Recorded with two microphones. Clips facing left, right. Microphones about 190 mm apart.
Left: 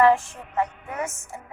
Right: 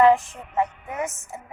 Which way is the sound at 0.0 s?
20° right (ahead or behind).